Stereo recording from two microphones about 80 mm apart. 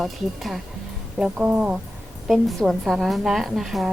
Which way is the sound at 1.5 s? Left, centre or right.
Centre.